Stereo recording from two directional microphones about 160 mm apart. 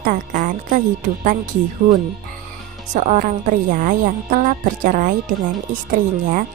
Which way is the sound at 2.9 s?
50° right (ahead or behind).